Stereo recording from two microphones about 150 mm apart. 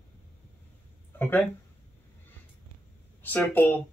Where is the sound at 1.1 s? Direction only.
10° left (ahead or behind).